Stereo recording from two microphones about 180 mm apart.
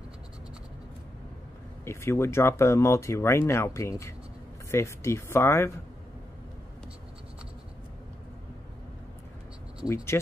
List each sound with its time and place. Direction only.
1.9 s speech: 15° left (ahead or behind)
9.8 s speech: 15° left (ahead or behind)